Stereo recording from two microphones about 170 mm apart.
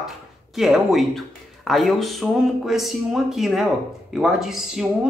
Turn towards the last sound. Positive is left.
turn(degrees=-5)  # may be behind; listen again after turning